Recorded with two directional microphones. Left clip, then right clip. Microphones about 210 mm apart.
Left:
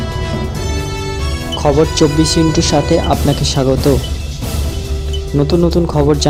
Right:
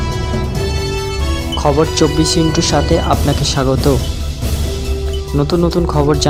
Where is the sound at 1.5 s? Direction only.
Centre (ahead or behind).